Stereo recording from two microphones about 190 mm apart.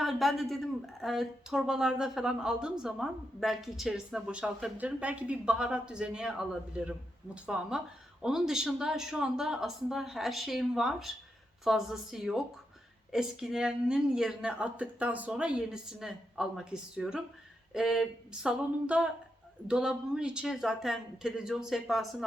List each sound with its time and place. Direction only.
0.0 s a woman's voice: centre (ahead or behind)